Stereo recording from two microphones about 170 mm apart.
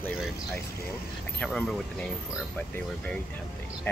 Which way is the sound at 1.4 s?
5° left (ahead or behind).